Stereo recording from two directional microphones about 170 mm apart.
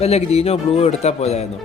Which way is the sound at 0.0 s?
35° left (ahead or behind).